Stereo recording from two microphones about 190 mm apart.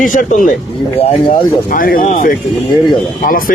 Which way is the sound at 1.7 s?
50° left (ahead or behind).